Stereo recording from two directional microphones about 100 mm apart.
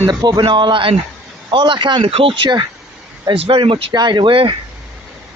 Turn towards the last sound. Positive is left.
turn(degrees=-60)  # may be behind; listen again after turning